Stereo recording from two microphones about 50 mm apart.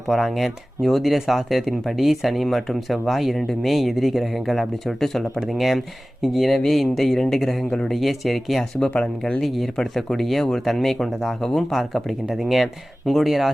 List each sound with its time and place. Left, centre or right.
0.1 s speech: centre
7.9 s speech: centre